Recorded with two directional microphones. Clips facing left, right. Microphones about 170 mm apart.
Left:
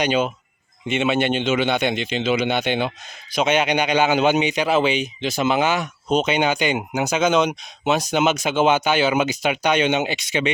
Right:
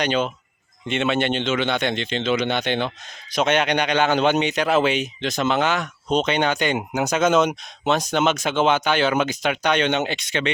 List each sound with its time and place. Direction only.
0.0 s a man's voice: 10° left (ahead or behind)